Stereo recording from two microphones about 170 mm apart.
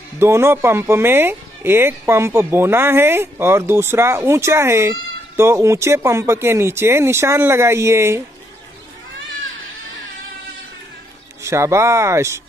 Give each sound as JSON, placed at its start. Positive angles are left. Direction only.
{"t": 0.2, "sound": "speech", "side_deg": -15}
{"t": 11.4, "sound": "speech", "side_deg": -15}